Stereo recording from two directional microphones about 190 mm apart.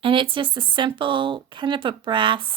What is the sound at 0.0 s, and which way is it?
Speech, 25° right (ahead or behind).